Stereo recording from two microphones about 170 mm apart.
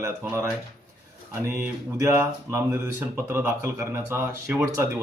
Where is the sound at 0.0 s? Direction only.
15° right (ahead or behind).